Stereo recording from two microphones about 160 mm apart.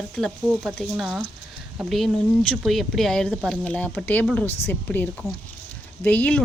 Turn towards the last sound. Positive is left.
turn(degrees=10)  # may be behind; listen again after turning